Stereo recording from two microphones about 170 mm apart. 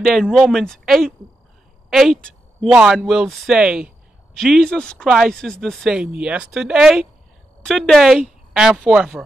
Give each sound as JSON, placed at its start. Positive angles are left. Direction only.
{"t": 0.0, "sound": "speech", "side_deg": 0}